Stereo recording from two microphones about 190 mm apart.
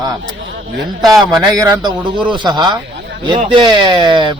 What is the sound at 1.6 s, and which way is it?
Speech, 25° right (ahead or behind).